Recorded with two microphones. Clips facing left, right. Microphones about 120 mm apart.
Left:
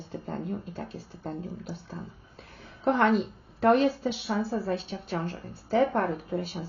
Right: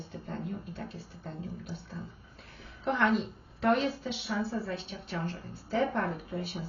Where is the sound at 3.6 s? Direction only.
50° left (ahead or behind).